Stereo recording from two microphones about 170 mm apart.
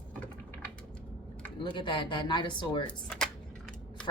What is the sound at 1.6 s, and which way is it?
Speech, 25° left (ahead or behind).